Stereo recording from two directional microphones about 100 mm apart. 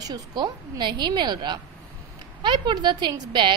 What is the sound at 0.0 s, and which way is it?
A woman's voice, 40° right (ahead or behind).